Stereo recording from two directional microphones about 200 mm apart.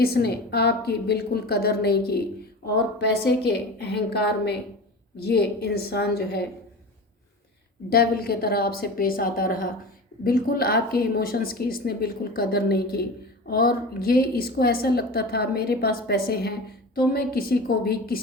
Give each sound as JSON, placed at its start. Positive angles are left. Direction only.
{"t": 0.0, "sound": "a woman's voice", "side_deg": 50}
{"t": 7.9, "sound": "a woman's voice", "side_deg": 50}